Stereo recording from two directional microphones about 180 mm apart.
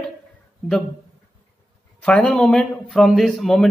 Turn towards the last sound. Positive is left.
turn(degrees=0)  # may be behind; listen again after turning